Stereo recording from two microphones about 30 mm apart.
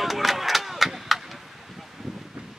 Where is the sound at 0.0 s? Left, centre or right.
Centre.